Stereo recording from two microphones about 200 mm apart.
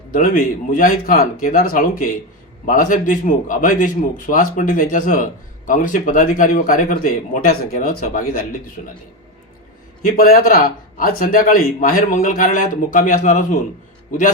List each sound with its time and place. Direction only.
0.1 s a man's voice: 40° left (ahead or behind)
10.1 s a man's voice: 45° left (ahead or behind)